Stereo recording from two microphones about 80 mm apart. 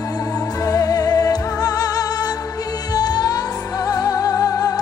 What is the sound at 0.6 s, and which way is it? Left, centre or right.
Music, left.